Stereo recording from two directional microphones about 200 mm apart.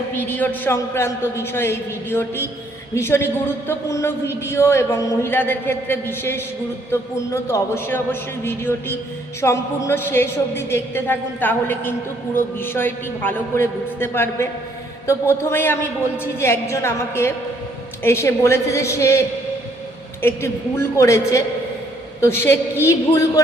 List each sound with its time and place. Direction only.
0.1 s a woman's voice: 10° left (ahead or behind)
20.2 s a woman's voice: 10° left (ahead or behind)